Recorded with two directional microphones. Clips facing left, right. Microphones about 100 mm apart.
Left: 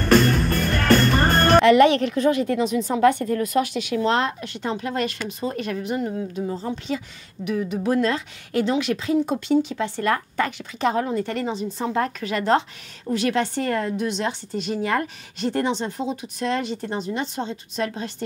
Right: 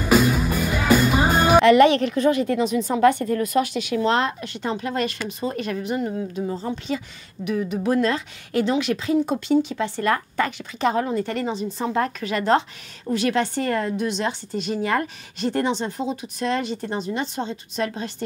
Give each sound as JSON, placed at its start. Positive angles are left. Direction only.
{"t": 0.0, "sound": "a woman's voice", "side_deg": -5}